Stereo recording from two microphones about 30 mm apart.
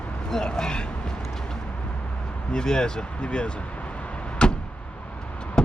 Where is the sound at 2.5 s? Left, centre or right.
Left.